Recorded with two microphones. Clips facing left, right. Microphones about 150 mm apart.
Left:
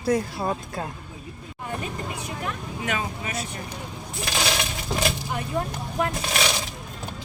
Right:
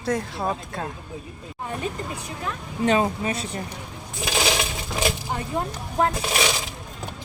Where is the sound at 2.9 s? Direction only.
30° right (ahead or behind).